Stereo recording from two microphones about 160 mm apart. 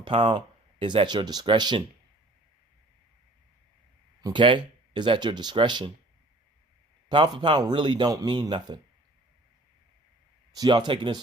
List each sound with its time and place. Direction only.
0.0 s speech: 35° right (ahead or behind)
4.2 s speech: 30° right (ahead or behind)
7.1 s speech: 30° right (ahead or behind)
10.5 s speech: 25° right (ahead or behind)